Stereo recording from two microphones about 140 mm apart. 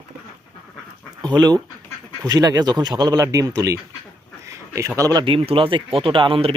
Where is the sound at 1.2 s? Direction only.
30° right (ahead or behind).